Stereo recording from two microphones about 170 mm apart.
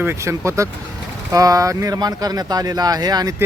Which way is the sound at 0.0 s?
15° right (ahead or behind).